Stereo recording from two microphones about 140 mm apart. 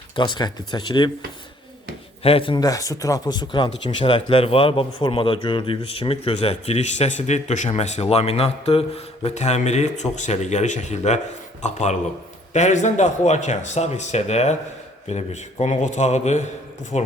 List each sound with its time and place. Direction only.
0.2 s speech: 30° left (ahead or behind)
2.2 s speech: 40° left (ahead or behind)
2.6 s speech: 25° left (ahead or behind); by 17.1 s 50° left (ahead or behind)